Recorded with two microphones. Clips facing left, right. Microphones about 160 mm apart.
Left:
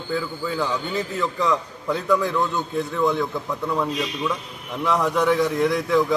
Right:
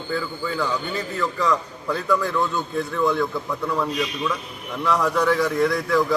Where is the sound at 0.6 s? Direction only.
20° left (ahead or behind).